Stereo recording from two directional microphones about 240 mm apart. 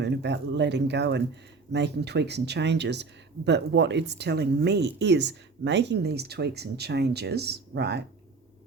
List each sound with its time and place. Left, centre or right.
0.0 s speech: right